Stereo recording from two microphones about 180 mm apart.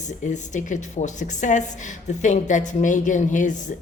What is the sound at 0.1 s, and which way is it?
A woman's voice, 45° left (ahead or behind).